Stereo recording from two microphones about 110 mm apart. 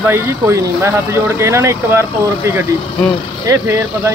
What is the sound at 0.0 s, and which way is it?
Speech, 20° right (ahead or behind).